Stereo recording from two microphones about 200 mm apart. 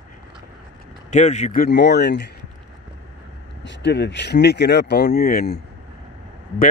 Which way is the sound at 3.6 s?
60° left (ahead or behind).